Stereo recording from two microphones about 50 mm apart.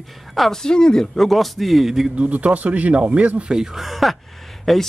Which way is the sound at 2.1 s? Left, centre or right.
Right.